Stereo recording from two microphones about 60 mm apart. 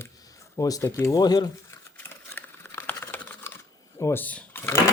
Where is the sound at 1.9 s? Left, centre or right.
Left.